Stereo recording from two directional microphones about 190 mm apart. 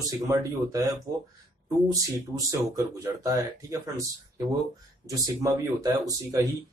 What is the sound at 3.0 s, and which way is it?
Speech, 15° right (ahead or behind).